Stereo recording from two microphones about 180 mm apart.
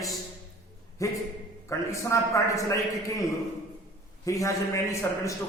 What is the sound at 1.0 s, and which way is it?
A man's voice, 15° left (ahead or behind).